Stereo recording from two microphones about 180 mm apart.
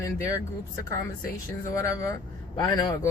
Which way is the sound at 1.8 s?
20° left (ahead or behind).